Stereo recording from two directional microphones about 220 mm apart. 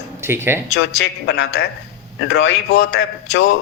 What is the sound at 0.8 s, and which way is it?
A man's voice, 50° left (ahead or behind).